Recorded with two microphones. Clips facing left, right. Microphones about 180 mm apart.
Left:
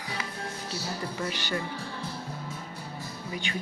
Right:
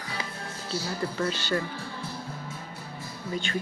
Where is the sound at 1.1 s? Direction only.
15° left (ahead or behind).